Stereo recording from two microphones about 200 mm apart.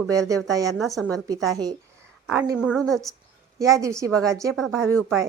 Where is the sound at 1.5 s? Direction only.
20° right (ahead or behind); by 3.0 s centre (ahead or behind).